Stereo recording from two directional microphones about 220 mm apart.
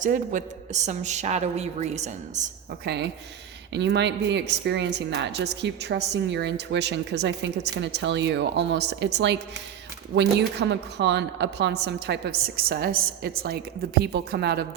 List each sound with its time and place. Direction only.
0.0 s a man's voice: 35° right (ahead or behind)
2.8 s speech: 50° right (ahead or behind)